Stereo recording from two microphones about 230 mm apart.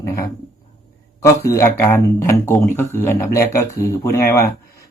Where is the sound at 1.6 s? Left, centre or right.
Centre.